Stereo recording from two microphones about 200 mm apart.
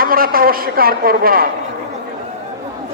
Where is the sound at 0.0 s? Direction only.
45° right (ahead or behind).